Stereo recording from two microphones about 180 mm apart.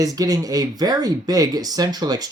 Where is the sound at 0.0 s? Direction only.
20° right (ahead or behind).